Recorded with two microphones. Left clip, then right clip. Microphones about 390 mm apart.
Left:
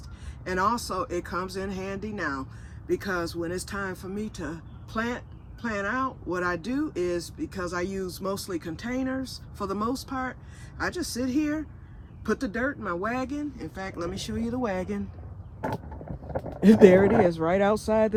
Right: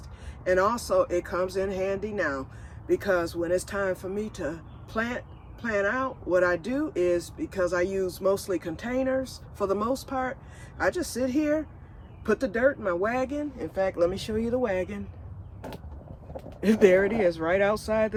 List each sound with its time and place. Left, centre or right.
0.4 s speech: centre
16.6 s speech: centre